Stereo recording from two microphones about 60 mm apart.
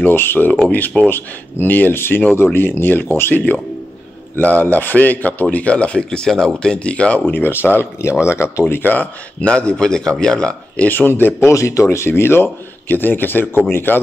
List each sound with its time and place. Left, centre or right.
0.0 s a man's voice: left
7.2 s speech: left
8.9 s a man's voice: left
9.5 s speech: centre
10.8 s speech: left
11.3 s speech: left